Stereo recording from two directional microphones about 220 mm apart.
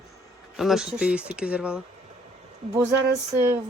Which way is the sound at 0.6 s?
Centre (ahead or behind).